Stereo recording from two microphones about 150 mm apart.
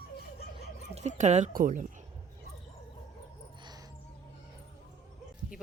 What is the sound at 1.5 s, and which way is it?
Speech, 65° right (ahead or behind).